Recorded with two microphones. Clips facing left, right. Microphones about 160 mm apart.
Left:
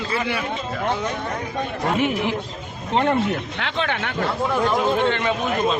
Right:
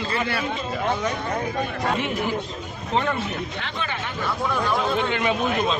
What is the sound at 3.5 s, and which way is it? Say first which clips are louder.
Speech: left 5 dB; 75° left (ahead or behind).